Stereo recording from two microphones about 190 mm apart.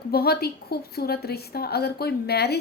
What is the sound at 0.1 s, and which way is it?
A woman's voice, 55° left (ahead or behind).